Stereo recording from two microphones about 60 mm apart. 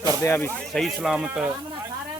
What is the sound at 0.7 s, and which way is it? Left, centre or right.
Speech, centre.